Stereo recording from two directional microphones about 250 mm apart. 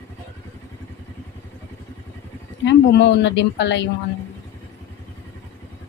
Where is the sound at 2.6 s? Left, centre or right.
Left.